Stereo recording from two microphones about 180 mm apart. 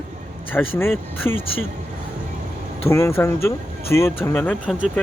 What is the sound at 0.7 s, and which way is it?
Speech, 10° left (ahead or behind).